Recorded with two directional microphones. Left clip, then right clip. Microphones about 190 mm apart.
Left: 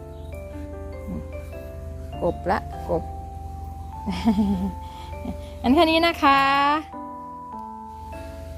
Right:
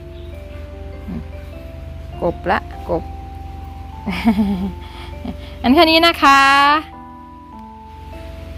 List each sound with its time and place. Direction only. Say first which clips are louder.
2.2 s speech: right 5 dB; centre (ahead or behind)
4.0 s speech: right 6 dB; centre (ahead or behind)